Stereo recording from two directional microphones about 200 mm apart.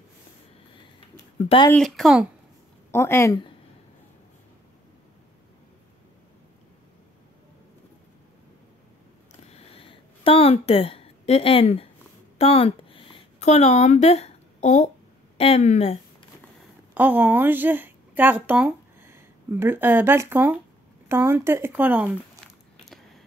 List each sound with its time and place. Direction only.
1.7 s speech: centre (ahead or behind)
2.9 s speech: 10° left (ahead or behind)
9.5 s a sound: 30° left (ahead or behind)
12.4 s speech: 30° left (ahead or behind)
16.9 s a woman's voice: 10° right (ahead or behind)